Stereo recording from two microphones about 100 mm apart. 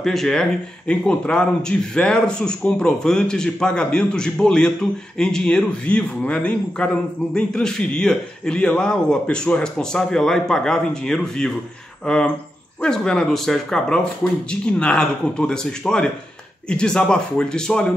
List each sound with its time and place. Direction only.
0.0 s speech: 5° left (ahead or behind)